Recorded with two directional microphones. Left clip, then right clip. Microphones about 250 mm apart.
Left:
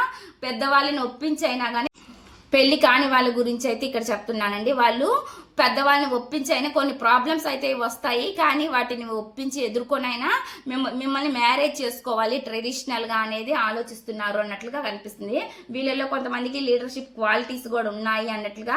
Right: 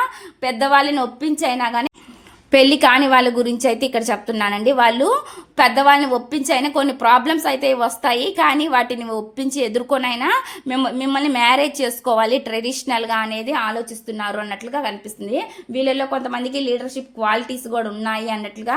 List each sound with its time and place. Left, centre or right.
0.4 s a woman's voice: right